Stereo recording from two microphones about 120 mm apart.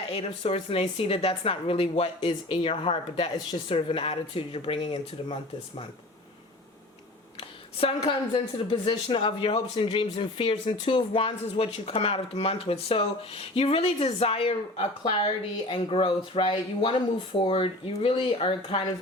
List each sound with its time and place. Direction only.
0.1 s a woman's voice: 55° left (ahead or behind)
7.3 s a woman's voice: 50° left (ahead or behind)